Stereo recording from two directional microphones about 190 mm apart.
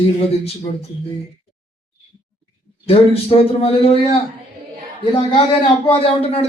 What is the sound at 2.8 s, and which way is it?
Speech, 30° left (ahead or behind).